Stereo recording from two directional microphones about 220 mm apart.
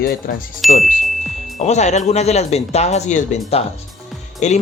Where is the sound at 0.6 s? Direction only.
Centre (ahead or behind).